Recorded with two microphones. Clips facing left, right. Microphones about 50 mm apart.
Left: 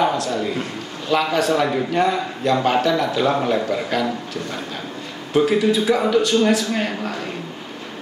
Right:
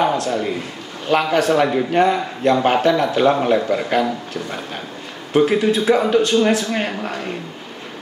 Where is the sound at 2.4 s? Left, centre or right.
Right.